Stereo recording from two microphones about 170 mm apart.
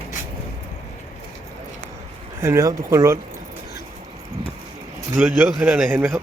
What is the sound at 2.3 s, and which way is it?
Speech, 15° right (ahead or behind).